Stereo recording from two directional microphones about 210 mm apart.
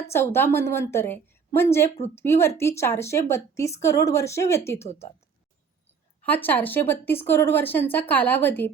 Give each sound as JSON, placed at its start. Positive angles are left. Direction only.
{"t": 0.1, "sound": "a woman's voice", "side_deg": 10}
{"t": 6.2, "sound": "a woman's voice", "side_deg": 10}